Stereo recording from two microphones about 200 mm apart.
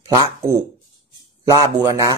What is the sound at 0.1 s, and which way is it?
Speech, 20° right (ahead or behind).